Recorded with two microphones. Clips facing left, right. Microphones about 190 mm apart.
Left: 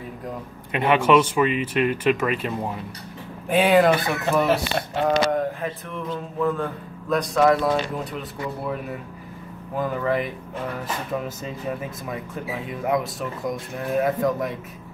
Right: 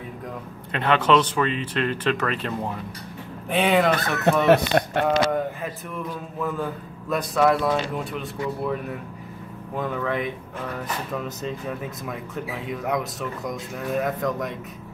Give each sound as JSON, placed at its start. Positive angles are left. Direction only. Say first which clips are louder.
{"t": 0.7, "sound": "speech", "louder": "left 2 dB", "side_deg": 10}
{"t": 4.5, "sound": "speech", "louder": "right 5 dB", "side_deg": -60}
{"t": 5.0, "sound": "speech", "louder": "left 1 dB", "side_deg": 0}
{"t": 9.8, "sound": "speech", "louder": "left 2 dB", "side_deg": 5}